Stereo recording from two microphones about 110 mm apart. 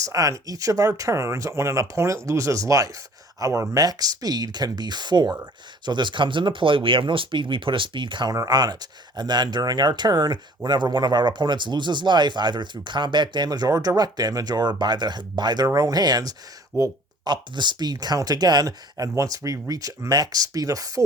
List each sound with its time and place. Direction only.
0.0 s speech: 30° right (ahead or behind)
17.2 s speech: 45° right (ahead or behind)